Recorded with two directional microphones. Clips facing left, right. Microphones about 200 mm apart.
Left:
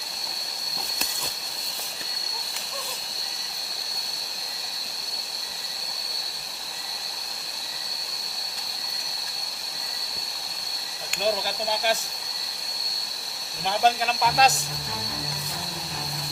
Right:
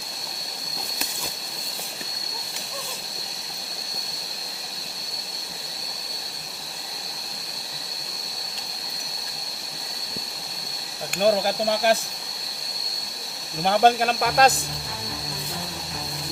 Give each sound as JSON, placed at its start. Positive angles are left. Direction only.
{"t": 11.1, "sound": "speech", "side_deg": -55}
{"t": 13.7, "sound": "speech", "side_deg": -55}